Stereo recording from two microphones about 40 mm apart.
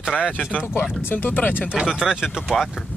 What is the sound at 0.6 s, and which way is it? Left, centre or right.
Speech, centre.